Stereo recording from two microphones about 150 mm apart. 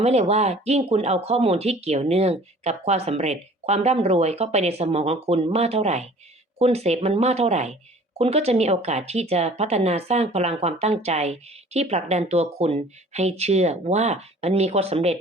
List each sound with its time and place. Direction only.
0.0 s speech: 45° right (ahead or behind)